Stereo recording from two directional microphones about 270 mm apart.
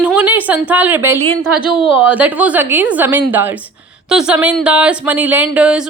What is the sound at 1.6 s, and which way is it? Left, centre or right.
Speech, centre.